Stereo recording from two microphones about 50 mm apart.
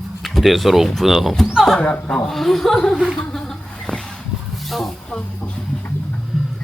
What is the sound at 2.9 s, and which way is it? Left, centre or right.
Speech, centre.